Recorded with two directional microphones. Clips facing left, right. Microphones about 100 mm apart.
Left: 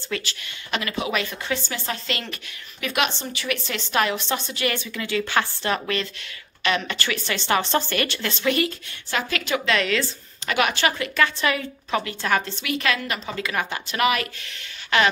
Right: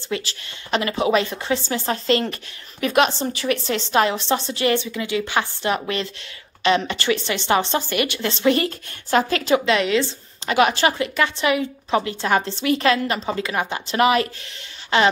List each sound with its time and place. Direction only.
0.0 s a woman's voice: 30° right (ahead or behind)
8.3 s speech: 30° right (ahead or behind)